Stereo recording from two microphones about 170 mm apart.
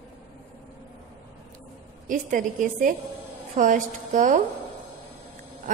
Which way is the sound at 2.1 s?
50° right (ahead or behind).